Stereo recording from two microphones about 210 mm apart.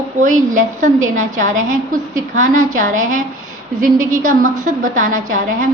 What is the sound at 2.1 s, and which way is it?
A woman's voice, 40° right (ahead or behind).